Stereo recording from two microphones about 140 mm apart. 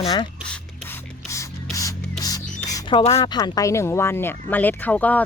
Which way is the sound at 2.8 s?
40° left (ahead or behind).